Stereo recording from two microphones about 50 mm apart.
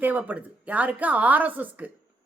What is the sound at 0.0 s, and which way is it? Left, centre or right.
A woman's voice, right.